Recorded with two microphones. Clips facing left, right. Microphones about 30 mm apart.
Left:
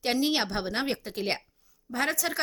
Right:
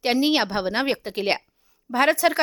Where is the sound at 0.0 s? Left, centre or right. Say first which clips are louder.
Right 6 dB; right.